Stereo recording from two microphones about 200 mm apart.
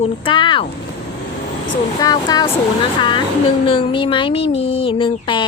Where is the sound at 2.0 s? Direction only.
20° left (ahead or behind).